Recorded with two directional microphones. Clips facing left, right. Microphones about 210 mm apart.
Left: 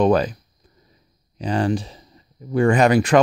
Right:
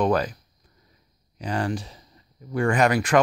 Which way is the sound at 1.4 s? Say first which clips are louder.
Left 6 dB; 25° left (ahead or behind).